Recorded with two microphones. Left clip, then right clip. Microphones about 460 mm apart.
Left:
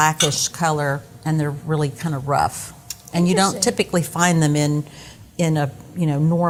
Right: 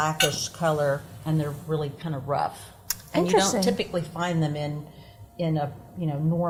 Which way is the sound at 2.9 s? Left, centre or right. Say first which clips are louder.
Right 4 dB; right.